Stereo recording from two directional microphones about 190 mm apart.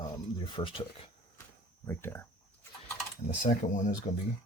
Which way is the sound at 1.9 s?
10° left (ahead or behind).